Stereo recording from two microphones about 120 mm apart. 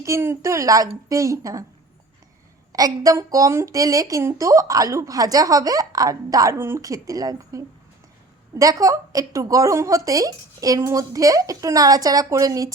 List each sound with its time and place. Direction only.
0.0 s a woman's voice: 20° right (ahead or behind)
2.7 s a woman's voice: 30° right (ahead or behind)